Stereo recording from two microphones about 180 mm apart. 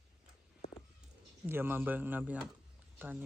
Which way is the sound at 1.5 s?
10° right (ahead or behind).